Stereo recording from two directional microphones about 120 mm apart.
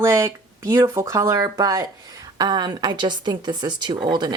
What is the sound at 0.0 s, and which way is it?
Speech, 25° right (ahead or behind).